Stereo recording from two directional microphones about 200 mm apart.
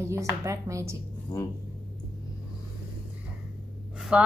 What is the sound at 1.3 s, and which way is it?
Speech, 15° left (ahead or behind).